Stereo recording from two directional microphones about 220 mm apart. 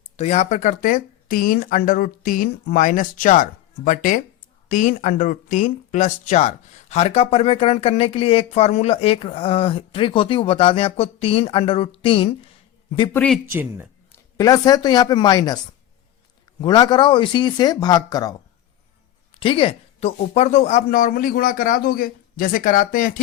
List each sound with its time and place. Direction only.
0.2 s speech: 30° left (ahead or behind)
13.1 s speech: 5° left (ahead or behind)
13.4 s speech: 10° right (ahead or behind)
14.1 s speech: 15° left (ahead or behind)
16.6 s speech: 20° left (ahead or behind)
19.4 s speech: 25° left (ahead or behind)